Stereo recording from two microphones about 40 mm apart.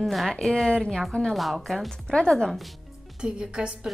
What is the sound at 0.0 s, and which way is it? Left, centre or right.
Speech, centre.